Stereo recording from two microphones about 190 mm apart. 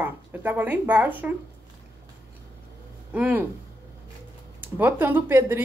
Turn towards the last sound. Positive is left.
turn(degrees=-10)  # may be behind; listen again after turning